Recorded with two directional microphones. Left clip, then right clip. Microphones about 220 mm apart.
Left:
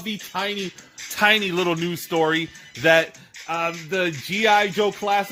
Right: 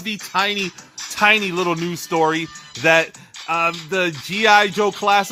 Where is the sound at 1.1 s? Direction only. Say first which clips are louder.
Right 3 dB; 10° right (ahead or behind).